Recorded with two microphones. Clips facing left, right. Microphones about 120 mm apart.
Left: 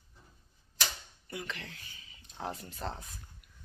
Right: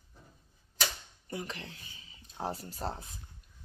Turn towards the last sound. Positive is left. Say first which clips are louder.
# right 2 dB
turn(degrees=-35)  # may be behind; listen again after turning